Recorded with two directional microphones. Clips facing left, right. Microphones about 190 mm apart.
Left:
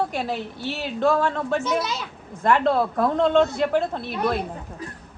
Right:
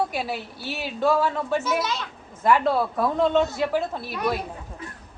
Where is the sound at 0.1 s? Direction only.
5° right (ahead or behind).